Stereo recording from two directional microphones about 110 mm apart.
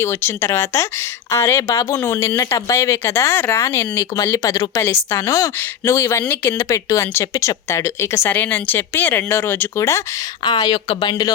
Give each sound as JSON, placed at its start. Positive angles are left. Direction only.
{"t": 0.0, "sound": "speech", "side_deg": 25}
{"t": 10.4, "sound": "speech", "side_deg": 40}